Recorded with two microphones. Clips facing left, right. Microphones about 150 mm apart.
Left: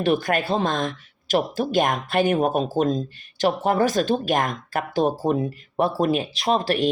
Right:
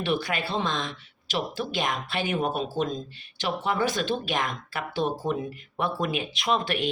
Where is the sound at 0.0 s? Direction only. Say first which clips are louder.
Left 6 dB; 45° left (ahead or behind).